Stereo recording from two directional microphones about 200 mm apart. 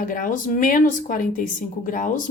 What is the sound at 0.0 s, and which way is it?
A woman's voice, 45° left (ahead or behind).